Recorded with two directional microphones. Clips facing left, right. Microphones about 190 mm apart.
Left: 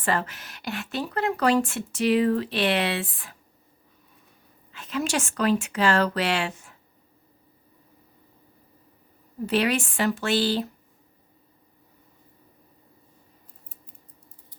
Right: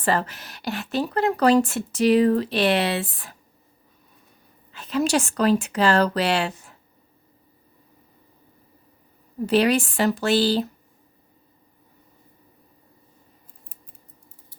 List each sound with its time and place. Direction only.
0.0 s speech: 35° right (ahead or behind)
4.7 s speech: 35° right (ahead or behind)
9.5 s speech: 35° right (ahead or behind)